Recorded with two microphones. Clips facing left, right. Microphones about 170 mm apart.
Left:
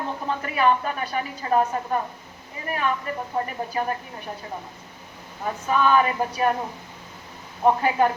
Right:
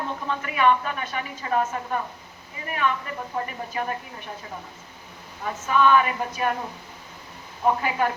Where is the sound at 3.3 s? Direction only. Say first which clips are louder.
Left 2 dB; 30° left (ahead or behind).